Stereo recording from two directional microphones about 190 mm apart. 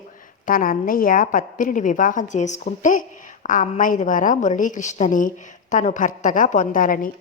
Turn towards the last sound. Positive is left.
turn(degrees=45)  # may be behind; listen again after turning